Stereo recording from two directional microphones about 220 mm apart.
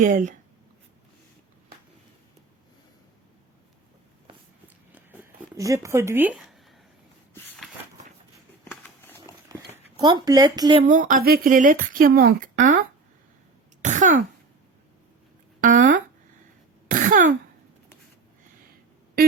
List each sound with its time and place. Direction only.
0.0 s a woman's voice: 35° right (ahead or behind)
4.9 s a sound: 10° right (ahead or behind)
8.7 s a sound: 10° left (ahead or behind)
10.0 s speech: 20° right (ahead or behind)
11.1 s a woman's voice: 40° right (ahead or behind)
13.8 s throat clearing: 35° right (ahead or behind)
15.6 s a woman's voice: 35° right (ahead or behind)
16.9 s throat clearing: 35° right (ahead or behind)